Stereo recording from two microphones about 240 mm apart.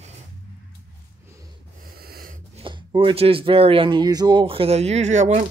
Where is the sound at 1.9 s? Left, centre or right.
Right.